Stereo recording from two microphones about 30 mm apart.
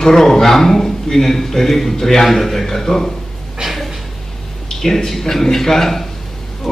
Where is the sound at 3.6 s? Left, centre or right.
Right.